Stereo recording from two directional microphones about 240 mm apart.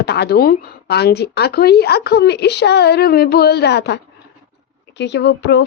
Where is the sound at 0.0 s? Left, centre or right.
Left.